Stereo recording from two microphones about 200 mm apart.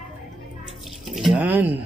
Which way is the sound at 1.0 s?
Centre (ahead or behind).